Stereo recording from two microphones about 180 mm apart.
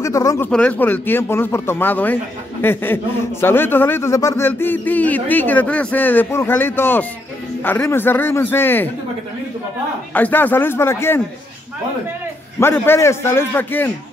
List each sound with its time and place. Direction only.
0.0 s a man's voice: 15° left (ahead or behind)
10.1 s a man's voice: 10° left (ahead or behind)
12.5 s a man's voice: 10° left (ahead or behind)